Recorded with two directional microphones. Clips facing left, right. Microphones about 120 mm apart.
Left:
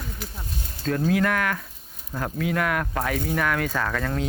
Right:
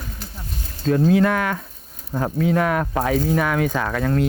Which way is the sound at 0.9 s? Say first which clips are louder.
Right 6 dB; 15° right (ahead or behind).